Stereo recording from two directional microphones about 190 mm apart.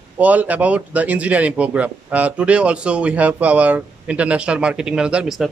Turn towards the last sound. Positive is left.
turn(degrees=-5)  # may be behind; listen again after turning